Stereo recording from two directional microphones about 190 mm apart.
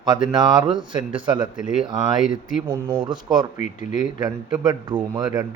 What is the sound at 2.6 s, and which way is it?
Speech, 25° right (ahead or behind).